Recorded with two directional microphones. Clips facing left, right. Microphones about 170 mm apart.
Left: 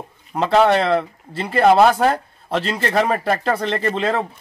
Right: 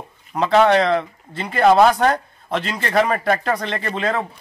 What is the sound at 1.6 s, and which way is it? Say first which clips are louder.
A man's voice: even; 5° left (ahead or behind).